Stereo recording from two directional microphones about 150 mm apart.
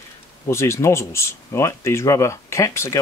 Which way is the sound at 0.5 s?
20° left (ahead or behind).